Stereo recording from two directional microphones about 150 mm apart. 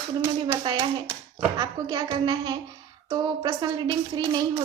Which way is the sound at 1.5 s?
25° right (ahead or behind).